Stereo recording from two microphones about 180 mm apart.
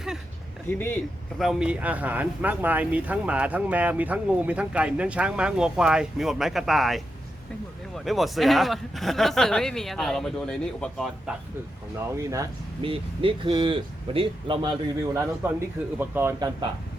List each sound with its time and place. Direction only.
0.7 s speech: 10° left (ahead or behind)
1.4 s speech: 5° right (ahead or behind)
11.9 s speech: 15° right (ahead or behind)
12.8 s speech: 30° right (ahead or behind)
15.1 s speech: 15° right (ahead or behind)